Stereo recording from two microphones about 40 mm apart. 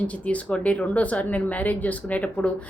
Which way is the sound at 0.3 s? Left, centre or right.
Left.